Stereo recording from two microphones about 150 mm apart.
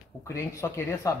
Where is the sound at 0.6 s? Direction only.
20° left (ahead or behind).